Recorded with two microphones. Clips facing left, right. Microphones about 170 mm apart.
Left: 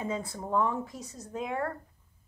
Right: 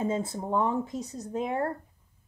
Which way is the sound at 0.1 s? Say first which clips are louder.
Right 2 dB; 25° right (ahead or behind).